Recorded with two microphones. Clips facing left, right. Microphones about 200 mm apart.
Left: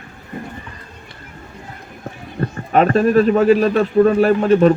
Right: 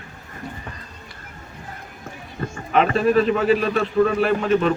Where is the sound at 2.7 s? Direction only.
45° left (ahead or behind).